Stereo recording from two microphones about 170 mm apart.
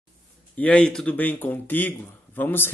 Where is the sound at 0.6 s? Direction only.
5° left (ahead or behind).